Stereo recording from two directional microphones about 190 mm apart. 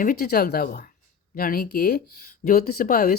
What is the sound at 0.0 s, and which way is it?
Speech, 50° left (ahead or behind).